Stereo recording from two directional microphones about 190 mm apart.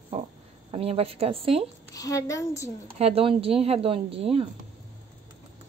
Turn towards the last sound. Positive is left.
turn(degrees=-30)  # may be behind; listen again after turning